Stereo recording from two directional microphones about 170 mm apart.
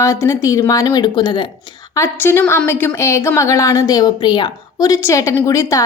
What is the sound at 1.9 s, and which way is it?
A woman's voice, 15° left (ahead or behind).